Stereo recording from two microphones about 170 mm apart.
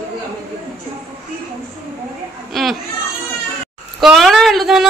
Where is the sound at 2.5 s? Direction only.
Centre (ahead or behind).